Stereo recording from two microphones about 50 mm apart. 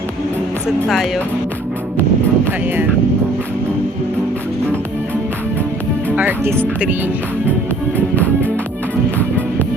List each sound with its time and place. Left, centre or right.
0.9 s speech: centre
2.0 s music: right
6.1 s speech: right